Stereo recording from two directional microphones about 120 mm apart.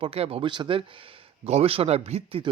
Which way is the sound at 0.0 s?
55° right (ahead or behind).